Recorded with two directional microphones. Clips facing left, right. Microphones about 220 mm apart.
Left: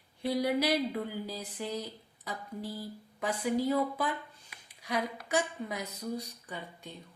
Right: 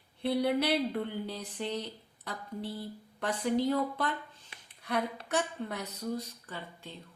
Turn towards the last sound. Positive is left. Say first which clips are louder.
# left 1 dB
turn(degrees=15)  # may be behind; listen again after turning